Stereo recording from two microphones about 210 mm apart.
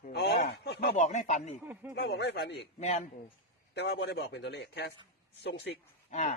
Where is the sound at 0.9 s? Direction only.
35° left (ahead or behind).